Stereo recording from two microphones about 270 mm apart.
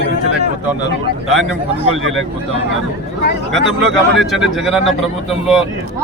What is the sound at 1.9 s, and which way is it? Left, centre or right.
Speech, right.